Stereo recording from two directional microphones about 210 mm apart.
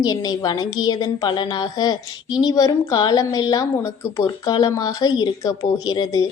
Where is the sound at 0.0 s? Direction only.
20° left (ahead or behind).